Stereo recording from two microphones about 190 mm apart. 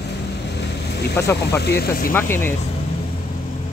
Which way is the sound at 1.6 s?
55° left (ahead or behind).